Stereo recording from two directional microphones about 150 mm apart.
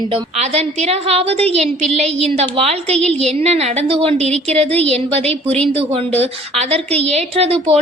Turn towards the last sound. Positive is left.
turn(degrees=-40)  # may be behind; listen again after turning